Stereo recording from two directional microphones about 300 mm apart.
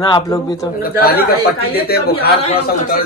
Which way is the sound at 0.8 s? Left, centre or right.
Left.